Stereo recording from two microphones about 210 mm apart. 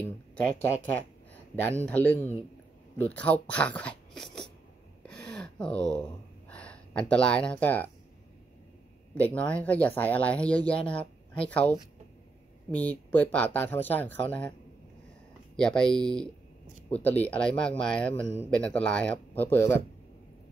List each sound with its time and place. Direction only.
0.0 s speech: 5° left (ahead or behind)
1.9 s speech: 5° left (ahead or behind)
3.4 s a sound: 5° left (ahead or behind)
6.5 s speech: 5° left (ahead or behind)
9.1 s speech: 5° left (ahead or behind)
10.7 s speech: 25° left (ahead or behind)
11.0 s speech: 5° left (ahead or behind)
12.7 s speech: 5° left (ahead or behind)
15.5 s speech: 5° left (ahead or behind)